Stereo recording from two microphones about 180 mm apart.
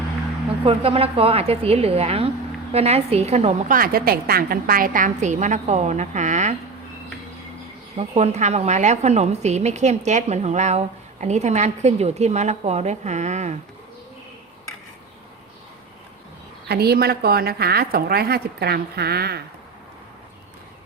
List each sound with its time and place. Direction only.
0.6 s a woman's voice: 30° right (ahead or behind)
7.9 s a woman's voice: 35° right (ahead or behind)
16.6 s a woman's voice: 60° right (ahead or behind)